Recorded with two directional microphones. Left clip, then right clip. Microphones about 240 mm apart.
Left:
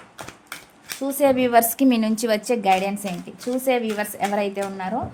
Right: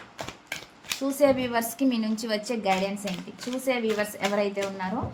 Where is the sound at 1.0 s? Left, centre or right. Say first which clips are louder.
Left 4 dB; left.